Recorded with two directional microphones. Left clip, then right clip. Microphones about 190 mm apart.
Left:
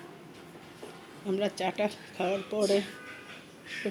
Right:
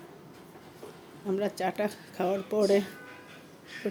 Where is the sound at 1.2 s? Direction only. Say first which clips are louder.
Even; 5° right (ahead or behind); by 2.8 s 20° right (ahead or behind).